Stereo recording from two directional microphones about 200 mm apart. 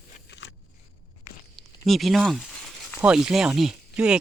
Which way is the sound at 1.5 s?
Centre (ahead or behind).